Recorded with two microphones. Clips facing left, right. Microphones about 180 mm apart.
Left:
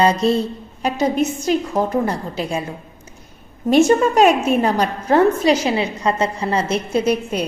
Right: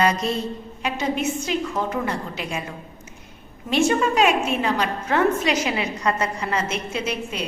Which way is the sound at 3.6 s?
45° left (ahead or behind).